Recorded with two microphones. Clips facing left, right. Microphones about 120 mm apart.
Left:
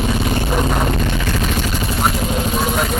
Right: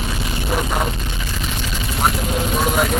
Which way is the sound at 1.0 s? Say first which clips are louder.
Left 8 dB; 70° left (ahead or behind).